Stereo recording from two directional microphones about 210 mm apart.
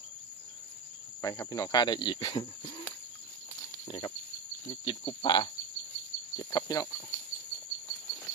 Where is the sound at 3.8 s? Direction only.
20° left (ahead or behind).